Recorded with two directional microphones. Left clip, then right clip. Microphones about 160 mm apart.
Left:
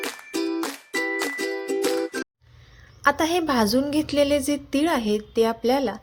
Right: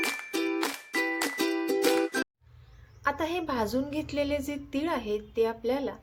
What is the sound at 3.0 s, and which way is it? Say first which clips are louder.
Speech: left 9 dB; 35° left (ahead or behind).